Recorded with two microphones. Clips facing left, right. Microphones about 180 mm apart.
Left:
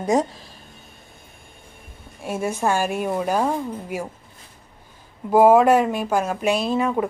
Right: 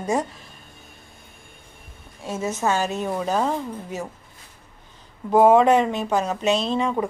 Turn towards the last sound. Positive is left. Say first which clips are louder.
# left 1 dB
turn(degrees=5)  # may be behind; listen again after turning